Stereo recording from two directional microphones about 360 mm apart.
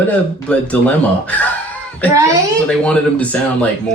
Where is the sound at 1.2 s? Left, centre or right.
Centre.